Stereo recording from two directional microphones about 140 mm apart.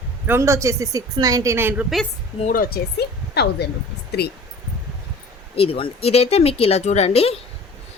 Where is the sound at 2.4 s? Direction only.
85° left.